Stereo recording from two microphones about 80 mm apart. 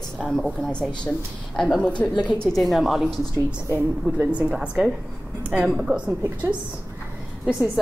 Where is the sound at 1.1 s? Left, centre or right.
Left.